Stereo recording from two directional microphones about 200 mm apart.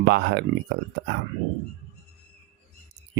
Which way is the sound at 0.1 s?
60° right (ahead or behind).